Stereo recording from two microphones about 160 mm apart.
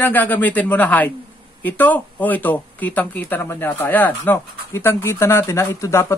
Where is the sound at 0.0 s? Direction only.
10° left (ahead or behind).